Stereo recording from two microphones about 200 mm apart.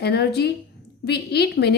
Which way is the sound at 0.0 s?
55° left (ahead or behind).